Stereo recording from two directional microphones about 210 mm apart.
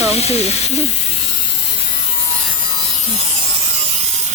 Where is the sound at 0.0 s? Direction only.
30° left (ahead or behind).